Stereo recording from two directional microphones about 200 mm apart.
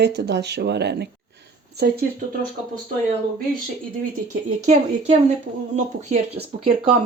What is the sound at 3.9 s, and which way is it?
Speech, 35° right (ahead or behind).